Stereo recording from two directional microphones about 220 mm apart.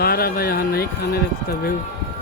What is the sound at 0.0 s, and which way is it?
Speech, 45° left (ahead or behind).